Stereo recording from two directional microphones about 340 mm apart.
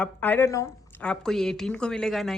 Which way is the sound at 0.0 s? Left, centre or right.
Centre.